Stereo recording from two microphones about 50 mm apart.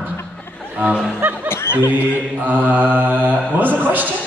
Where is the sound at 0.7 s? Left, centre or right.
Right.